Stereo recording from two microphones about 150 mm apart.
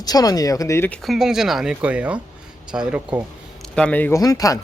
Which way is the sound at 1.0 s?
Centre (ahead or behind).